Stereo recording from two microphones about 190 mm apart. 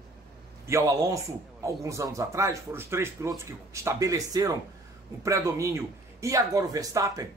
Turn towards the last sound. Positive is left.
turn(degrees=-20)  # may be behind; listen again after turning